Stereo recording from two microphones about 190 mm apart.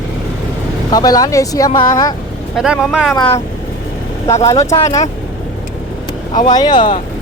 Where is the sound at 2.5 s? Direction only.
5° right (ahead or behind).